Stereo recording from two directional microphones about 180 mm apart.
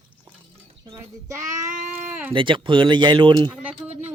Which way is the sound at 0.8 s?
20° right (ahead or behind).